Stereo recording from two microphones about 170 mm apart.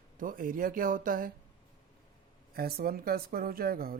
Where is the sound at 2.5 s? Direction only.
65° right (ahead or behind).